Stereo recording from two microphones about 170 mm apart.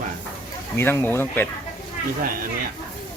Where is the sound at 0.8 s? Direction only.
15° left (ahead or behind).